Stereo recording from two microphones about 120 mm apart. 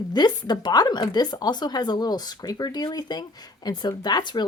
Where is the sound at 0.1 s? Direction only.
35° left (ahead or behind).